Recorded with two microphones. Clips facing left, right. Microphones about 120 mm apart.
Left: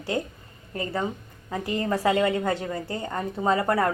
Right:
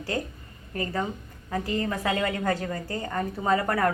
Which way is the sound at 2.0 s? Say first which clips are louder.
Left 5 dB; 25° left (ahead or behind).